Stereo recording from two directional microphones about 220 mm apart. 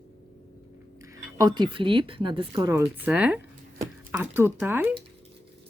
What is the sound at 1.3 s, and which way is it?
Speech, 20° right (ahead or behind).